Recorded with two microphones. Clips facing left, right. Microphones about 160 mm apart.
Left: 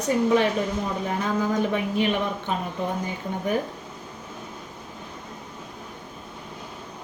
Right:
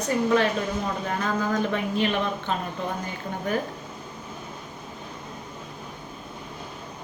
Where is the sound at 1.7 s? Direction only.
15° left (ahead or behind).